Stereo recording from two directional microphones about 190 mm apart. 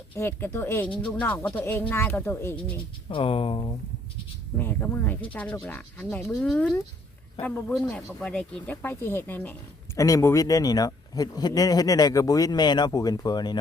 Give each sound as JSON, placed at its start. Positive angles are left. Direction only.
{"t": 0.2, "sound": "speech", "side_deg": 10}
{"t": 3.1, "sound": "speech", "side_deg": 30}
{"t": 4.5, "sound": "speech", "side_deg": 10}